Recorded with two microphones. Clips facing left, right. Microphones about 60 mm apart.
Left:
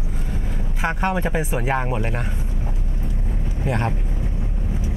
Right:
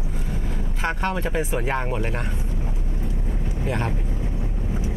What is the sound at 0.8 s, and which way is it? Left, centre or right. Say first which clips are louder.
Speech: left 3 dB; centre.